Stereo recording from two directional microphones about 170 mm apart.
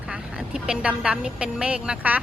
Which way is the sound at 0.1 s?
5° right (ahead or behind).